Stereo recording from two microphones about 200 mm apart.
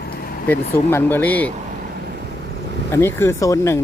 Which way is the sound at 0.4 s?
10° left (ahead or behind).